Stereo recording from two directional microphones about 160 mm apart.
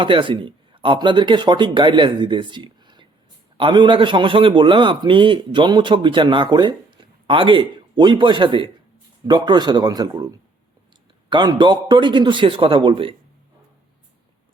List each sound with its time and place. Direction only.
0.0 s a man's voice: 30° right (ahead or behind)